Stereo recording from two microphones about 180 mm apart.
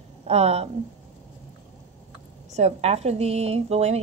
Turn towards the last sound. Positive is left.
turn(degrees=-35)  # may be behind; listen again after turning